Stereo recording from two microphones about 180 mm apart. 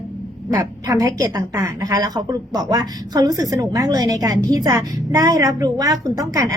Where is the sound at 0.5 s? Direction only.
20° right (ahead or behind).